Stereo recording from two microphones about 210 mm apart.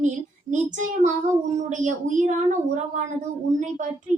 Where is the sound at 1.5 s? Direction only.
35° right (ahead or behind).